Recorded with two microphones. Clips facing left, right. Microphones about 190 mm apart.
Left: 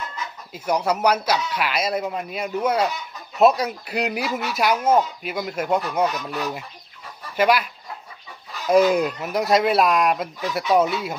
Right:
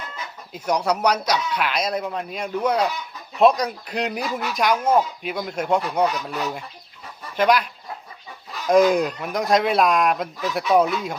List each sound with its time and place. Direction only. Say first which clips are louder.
0.5 s speech: even; 5° left (ahead or behind)
7.3 s speech: even; 5° left (ahead or behind)
8.7 s speech: even; 5° left (ahead or behind)